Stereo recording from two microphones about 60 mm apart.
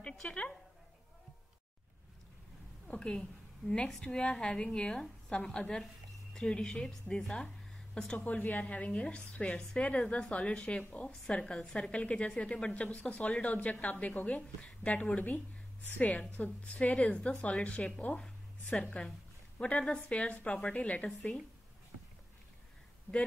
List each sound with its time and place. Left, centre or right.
0.3 s a woman's voice: centre
2.9 s a woman's voice: centre
8.3 s a woman's voice: left